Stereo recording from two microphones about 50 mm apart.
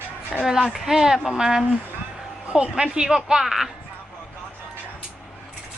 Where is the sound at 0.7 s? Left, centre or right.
Centre.